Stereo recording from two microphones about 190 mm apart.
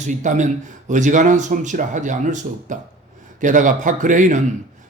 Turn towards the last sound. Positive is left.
turn(degrees=-40)  # may be behind; listen again after turning